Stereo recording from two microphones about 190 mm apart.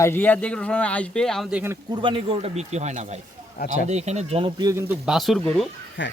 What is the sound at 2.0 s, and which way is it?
Speech, 25° right (ahead or behind).